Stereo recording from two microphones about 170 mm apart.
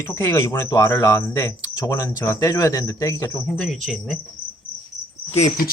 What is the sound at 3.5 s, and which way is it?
Speech, centre (ahead or behind).